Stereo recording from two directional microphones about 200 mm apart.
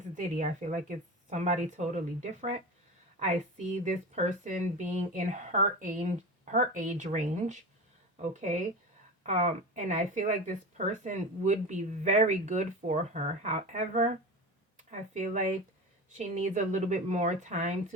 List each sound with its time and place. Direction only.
0.2 s speech: 40° right (ahead or behind)
3.2 s speech: 35° right (ahead or behind)